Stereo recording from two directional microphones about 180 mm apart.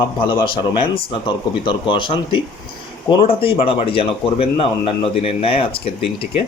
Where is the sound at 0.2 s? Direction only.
30° left (ahead or behind).